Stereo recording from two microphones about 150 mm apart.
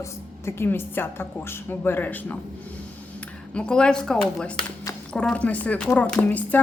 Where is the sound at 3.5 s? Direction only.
5° left (ahead or behind).